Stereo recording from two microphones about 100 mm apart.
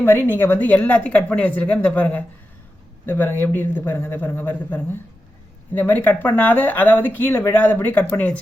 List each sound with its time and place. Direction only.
0.0 s a man's voice: 20° left (ahead or behind)